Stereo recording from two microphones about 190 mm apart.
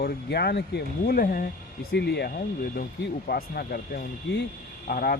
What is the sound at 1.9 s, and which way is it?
Speech, 60° left (ahead or behind).